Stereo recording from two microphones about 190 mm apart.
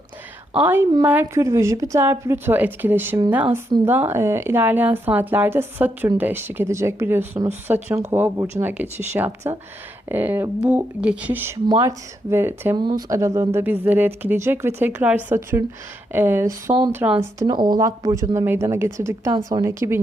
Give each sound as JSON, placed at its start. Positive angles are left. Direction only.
{"t": 0.6, "sound": "speech", "side_deg": -10}